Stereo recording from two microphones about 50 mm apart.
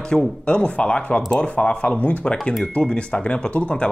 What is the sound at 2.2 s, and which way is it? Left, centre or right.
Speech, centre.